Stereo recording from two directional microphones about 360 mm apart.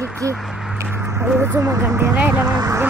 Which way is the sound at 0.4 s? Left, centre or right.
Centre.